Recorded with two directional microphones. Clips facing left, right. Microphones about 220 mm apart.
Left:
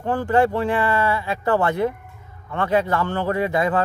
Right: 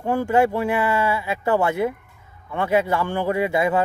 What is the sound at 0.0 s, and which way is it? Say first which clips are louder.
A man's voice: even; 10° right (ahead or behind).